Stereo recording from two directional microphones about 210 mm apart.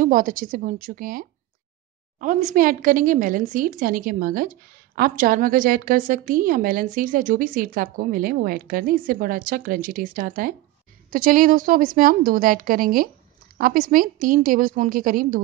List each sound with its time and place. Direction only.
0.0 s a woman's voice: 40° right (ahead or behind)